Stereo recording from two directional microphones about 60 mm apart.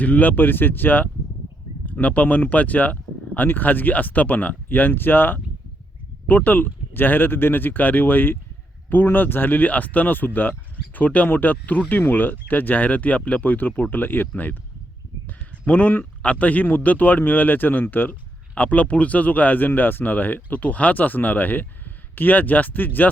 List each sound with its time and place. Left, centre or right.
0.0 s speech: left